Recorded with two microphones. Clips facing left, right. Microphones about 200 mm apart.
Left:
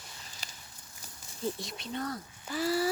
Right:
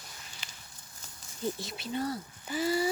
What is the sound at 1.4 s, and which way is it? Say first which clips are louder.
Speech: right 1 dB; centre (ahead or behind).